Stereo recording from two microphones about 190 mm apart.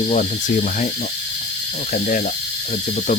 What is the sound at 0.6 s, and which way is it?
Speech, 40° left (ahead or behind).